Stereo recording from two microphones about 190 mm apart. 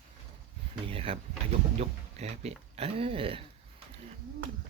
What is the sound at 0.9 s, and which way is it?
Speech, 30° right (ahead or behind).